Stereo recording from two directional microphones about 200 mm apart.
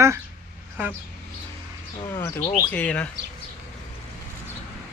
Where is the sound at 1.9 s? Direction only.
15° left (ahead or behind).